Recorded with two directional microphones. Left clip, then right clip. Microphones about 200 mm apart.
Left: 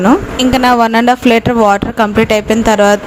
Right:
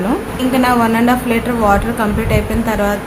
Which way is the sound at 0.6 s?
50° left (ahead or behind).